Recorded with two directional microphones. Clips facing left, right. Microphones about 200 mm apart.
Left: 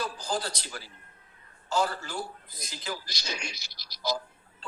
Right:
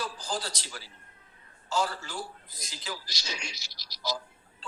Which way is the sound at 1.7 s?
55° left (ahead or behind).